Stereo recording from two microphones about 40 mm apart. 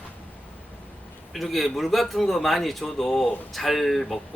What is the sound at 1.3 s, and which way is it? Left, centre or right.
A man's voice, centre.